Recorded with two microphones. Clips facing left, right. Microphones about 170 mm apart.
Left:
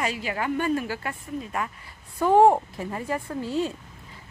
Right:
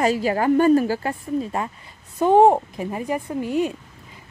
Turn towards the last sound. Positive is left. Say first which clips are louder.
# right 4 dB
turn(degrees=-15)  # may be behind; listen again after turning